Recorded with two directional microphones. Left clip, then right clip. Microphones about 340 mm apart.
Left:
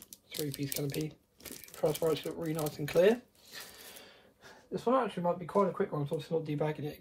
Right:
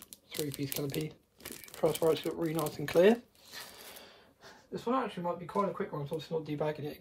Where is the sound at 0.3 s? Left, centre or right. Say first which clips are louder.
Right 1 dB; centre.